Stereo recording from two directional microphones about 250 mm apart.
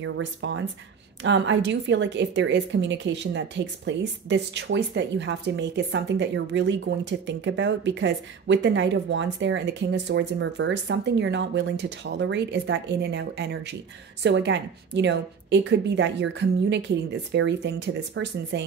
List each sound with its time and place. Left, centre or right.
0.0 s a woman's voice: right